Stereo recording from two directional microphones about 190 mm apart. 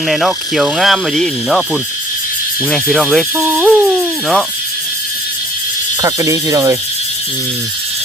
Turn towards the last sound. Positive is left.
turn(degrees=-15)  # may be behind; listen again after turning